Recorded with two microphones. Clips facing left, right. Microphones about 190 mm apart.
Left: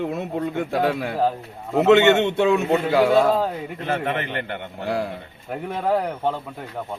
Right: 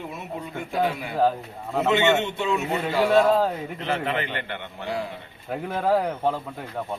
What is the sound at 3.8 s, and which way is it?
A man's voice, 50° left (ahead or behind).